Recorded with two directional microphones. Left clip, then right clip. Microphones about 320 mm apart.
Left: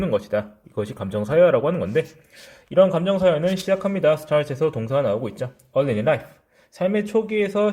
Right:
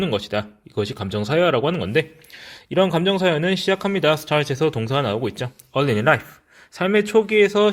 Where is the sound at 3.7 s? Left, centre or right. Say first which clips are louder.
Even; centre.